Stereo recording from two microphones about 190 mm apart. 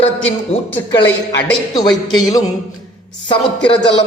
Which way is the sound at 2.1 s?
20° left (ahead or behind).